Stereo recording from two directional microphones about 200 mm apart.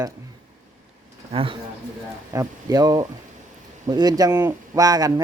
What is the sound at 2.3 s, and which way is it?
Speech, 15° right (ahead or behind).